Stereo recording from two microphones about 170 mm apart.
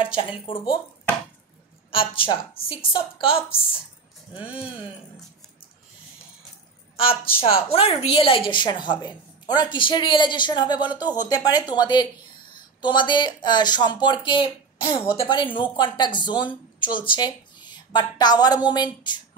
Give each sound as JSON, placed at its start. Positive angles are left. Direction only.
{"t": 0.0, "sound": "speech", "side_deg": 30}
{"t": 1.9, "sound": "speech", "side_deg": 30}
{"t": 7.0, "sound": "a woman's voice", "side_deg": 35}